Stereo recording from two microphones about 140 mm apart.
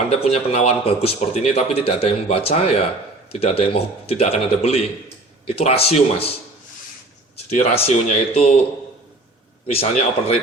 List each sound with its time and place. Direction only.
0.1 s speech: 50° left (ahead or behind)
7.5 s speech: 50° left (ahead or behind)
9.6 s speech: 45° left (ahead or behind)